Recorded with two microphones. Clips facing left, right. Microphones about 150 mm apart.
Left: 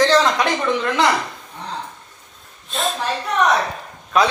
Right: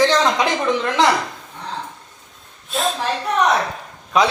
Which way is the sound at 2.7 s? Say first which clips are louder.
Right 2 dB; centre (ahead or behind).